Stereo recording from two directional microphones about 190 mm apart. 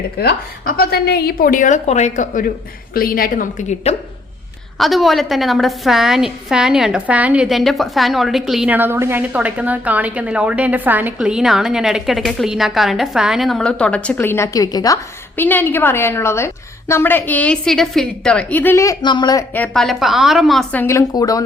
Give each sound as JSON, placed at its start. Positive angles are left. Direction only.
{"t": 0.2, "sound": "a woman's voice", "side_deg": 50}
{"t": 3.9, "sound": "speech", "side_deg": 35}
{"t": 4.8, "sound": "a woman's voice", "side_deg": 0}
{"t": 19.5, "sound": "a woman's voice", "side_deg": 5}
{"t": 20.8, "sound": "a woman's voice", "side_deg": 15}